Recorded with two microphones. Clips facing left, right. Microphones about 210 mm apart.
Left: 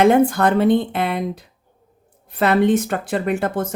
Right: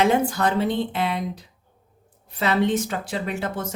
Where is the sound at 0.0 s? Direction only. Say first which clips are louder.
Left 6 dB; 55° left (ahead or behind).